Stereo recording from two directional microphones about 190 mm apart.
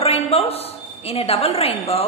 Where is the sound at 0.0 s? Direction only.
30° left (ahead or behind).